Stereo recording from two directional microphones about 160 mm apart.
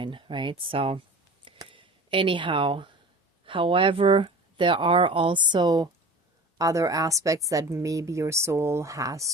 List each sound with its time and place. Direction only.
0.0 s speech: 30° right (ahead or behind)
1.5 s a sound: 30° right (ahead or behind)
3.4 s a woman's voice: 35° right (ahead or behind)